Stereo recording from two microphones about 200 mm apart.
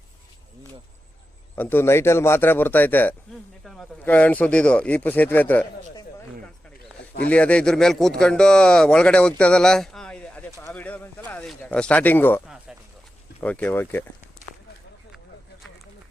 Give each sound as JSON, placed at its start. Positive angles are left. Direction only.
{"t": 1.5, "sound": "speech", "side_deg": 10}
{"t": 3.6, "sound": "a sound", "side_deg": 0}
{"t": 4.0, "sound": "speech", "side_deg": 5}
{"t": 7.3, "sound": "a man's voice", "side_deg": 5}
{"t": 13.4, "sound": "speech", "side_deg": 5}